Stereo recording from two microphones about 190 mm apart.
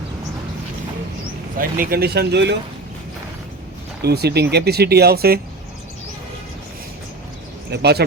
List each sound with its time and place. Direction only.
1.5 s speech: 50° right (ahead or behind)
4.0 s speech: 60° right (ahead or behind)
7.7 s speech: 60° right (ahead or behind)